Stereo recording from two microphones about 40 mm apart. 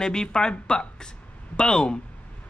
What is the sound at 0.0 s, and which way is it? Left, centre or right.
Speech, centre.